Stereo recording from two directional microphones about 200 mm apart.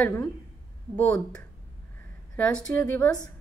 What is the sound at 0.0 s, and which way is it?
A woman's voice, 10° left (ahead or behind).